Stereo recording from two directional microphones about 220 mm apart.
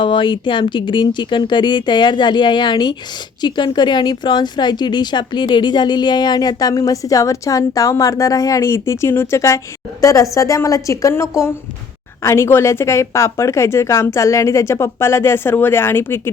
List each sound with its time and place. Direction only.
0.0 s speech: 20° left (ahead or behind)